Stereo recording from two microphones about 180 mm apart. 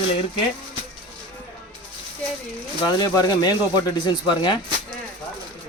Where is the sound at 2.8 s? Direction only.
25° left (ahead or behind).